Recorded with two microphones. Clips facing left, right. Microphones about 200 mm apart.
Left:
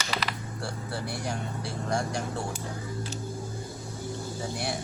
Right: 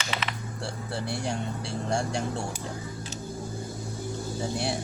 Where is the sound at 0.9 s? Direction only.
25° right (ahead or behind).